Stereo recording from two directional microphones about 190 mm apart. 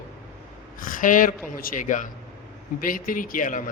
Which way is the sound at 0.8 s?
45° left (ahead or behind).